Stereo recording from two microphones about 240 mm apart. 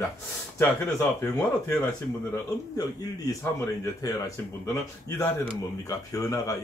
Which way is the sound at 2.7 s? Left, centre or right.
Centre.